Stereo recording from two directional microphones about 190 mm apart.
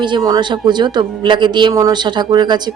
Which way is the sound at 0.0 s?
20° right (ahead or behind).